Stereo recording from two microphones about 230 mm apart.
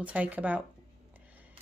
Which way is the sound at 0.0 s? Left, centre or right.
Centre.